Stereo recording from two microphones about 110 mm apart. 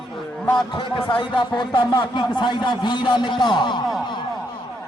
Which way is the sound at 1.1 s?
45° left (ahead or behind).